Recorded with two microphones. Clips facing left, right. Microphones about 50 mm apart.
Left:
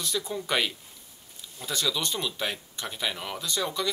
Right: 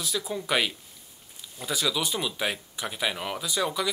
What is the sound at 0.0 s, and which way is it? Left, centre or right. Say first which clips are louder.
Speech: even; centre.